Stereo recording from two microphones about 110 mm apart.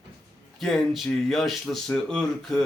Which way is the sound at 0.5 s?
Centre (ahead or behind).